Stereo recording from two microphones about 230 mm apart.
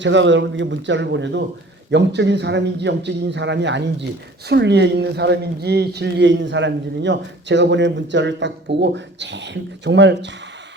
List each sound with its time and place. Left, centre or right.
0.0 s speech: right